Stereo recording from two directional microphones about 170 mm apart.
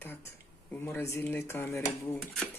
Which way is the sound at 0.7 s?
15° left (ahead or behind).